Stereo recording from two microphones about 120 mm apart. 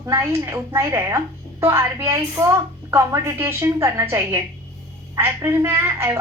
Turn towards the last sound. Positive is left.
turn(degrees=-20)  # may be behind; listen again after turning